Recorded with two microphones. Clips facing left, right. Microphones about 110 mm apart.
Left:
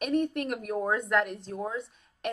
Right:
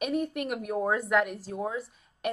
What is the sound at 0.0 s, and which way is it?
A woman's voice, 5° right (ahead or behind).